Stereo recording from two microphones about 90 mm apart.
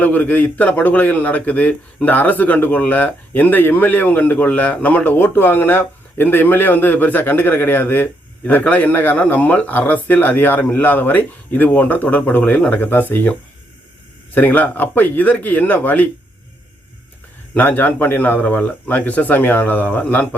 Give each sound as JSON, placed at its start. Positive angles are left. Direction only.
{"t": 0.0, "sound": "speech", "side_deg": 20}
{"t": 14.3, "sound": "speech", "side_deg": 20}
{"t": 17.6, "sound": "speech", "side_deg": 20}